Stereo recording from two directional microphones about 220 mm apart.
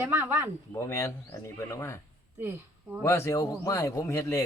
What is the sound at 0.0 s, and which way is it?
Speech, 10° right (ahead or behind).